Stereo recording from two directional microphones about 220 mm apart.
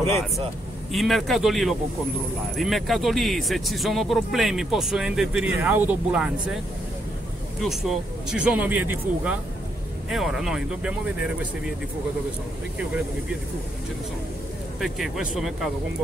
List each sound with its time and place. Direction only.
0.9 s speech: centre (ahead or behind)
7.6 s speech: centre (ahead or behind)
14.8 s speech: centre (ahead or behind)